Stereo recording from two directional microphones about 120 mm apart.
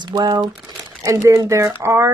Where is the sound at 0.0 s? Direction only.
35° right (ahead or behind).